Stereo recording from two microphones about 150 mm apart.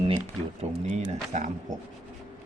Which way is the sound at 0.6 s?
45° right (ahead or behind).